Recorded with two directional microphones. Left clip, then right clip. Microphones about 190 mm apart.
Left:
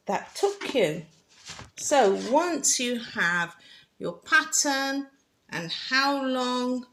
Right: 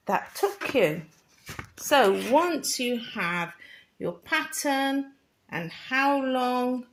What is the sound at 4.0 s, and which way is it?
Speech, 30° right (ahead or behind).